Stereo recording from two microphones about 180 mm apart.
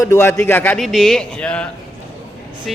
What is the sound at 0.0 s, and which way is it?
A man's voice, 15° left (ahead or behind).